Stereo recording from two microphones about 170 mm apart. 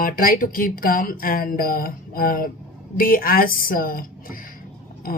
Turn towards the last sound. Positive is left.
turn(degrees=55)  # may be behind; listen again after turning